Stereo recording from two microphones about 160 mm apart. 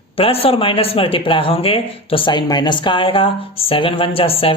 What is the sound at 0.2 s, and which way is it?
Speech, 35° left (ahead or behind).